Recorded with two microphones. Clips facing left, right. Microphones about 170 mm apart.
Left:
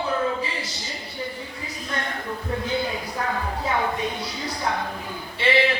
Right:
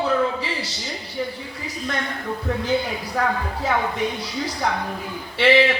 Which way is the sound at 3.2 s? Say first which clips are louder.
Right 6 dB; 90° right.